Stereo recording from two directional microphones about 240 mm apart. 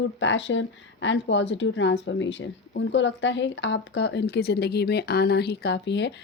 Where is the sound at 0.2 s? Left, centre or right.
Left.